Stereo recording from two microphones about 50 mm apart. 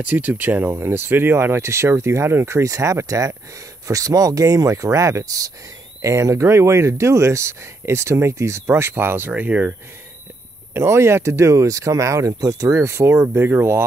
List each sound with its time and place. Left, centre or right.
0.1 s speech: right
9.3 s speech: right
10.7 s speech: right